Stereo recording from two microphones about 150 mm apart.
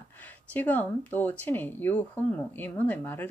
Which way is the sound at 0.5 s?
10° left (ahead or behind).